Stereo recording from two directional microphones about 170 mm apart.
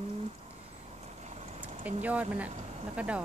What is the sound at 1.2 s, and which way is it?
Vehicle, 40° right (ahead or behind).